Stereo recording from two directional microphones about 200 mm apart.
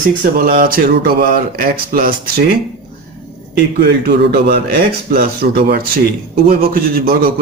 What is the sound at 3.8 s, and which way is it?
Speech, 55° right (ahead or behind).